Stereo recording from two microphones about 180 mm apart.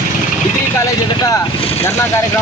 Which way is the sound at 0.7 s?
20° left (ahead or behind).